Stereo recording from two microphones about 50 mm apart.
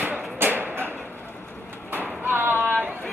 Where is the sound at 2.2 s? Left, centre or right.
Right.